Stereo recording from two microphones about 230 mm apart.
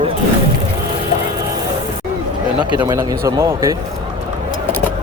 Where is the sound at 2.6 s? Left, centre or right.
Centre.